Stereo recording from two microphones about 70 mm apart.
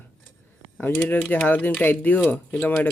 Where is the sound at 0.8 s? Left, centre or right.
Left.